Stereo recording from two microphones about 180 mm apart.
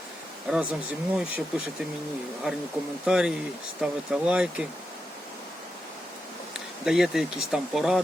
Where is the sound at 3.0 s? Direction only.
5° right (ahead or behind).